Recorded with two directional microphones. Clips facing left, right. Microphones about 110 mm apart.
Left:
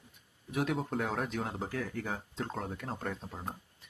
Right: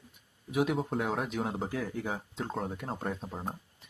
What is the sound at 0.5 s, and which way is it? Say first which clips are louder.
Speech: right 3 dB; 5° right (ahead or behind).